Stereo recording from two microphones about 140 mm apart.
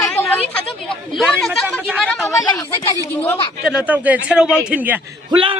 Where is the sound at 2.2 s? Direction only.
20° left (ahead or behind).